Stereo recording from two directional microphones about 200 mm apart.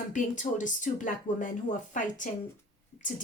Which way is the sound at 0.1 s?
40° left (ahead or behind).